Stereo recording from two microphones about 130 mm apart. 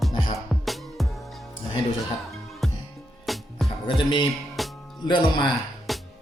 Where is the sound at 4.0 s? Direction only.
40° left (ahead or behind).